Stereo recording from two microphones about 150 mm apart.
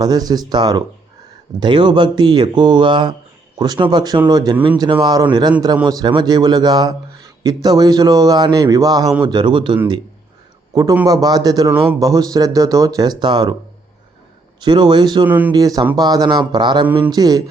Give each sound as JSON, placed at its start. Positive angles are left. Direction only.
{"t": 0.0, "sound": "speech", "side_deg": -25}
{"t": 11.0, "sound": "speech", "side_deg": -25}
{"t": 11.7, "sound": "speech", "side_deg": -10}
{"t": 11.9, "sound": "speech", "side_deg": -25}
{"t": 14.6, "sound": "speech", "side_deg": -30}
{"t": 15.3, "sound": "speech", "side_deg": -10}
{"t": 15.5, "sound": "speech", "side_deg": -25}